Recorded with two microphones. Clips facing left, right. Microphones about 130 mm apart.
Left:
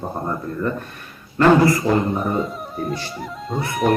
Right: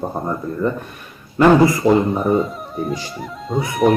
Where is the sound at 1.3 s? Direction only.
15° right (ahead or behind).